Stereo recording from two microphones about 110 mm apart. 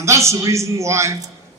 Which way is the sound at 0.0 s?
25° right (ahead or behind).